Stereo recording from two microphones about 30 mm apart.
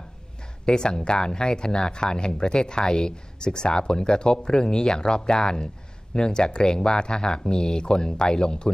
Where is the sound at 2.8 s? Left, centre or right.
Centre.